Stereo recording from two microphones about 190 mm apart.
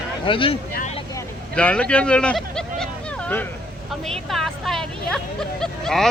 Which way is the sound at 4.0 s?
Centre (ahead or behind).